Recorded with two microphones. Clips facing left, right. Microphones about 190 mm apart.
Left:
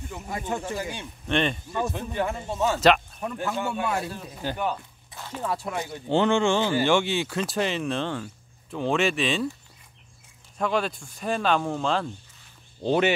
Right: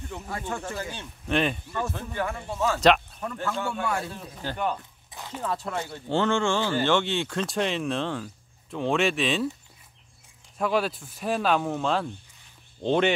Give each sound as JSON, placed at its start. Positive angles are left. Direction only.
{"t": 0.3, "sound": "speech", "side_deg": 15}
{"t": 1.2, "sound": "speech", "side_deg": -5}
{"t": 1.7, "sound": "speech", "side_deg": 15}
{"t": 4.1, "sound": "speech", "side_deg": 0}
{"t": 5.1, "sound": "a sound", "side_deg": -15}
{"t": 5.4, "sound": "speech", "side_deg": 10}
{"t": 10.6, "sound": "speech", "side_deg": -5}